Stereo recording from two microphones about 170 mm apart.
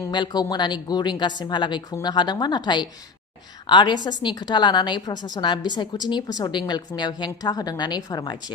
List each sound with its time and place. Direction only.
0.1 s a woman's voice: 25° left (ahead or behind)